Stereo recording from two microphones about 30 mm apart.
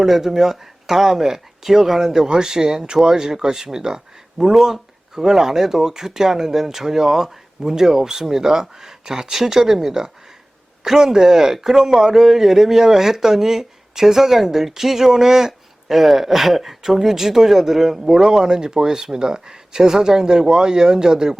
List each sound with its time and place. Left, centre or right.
0.0 s speech: centre
2.0 s speech: right
10.0 s speech: right
10.8 s speech: centre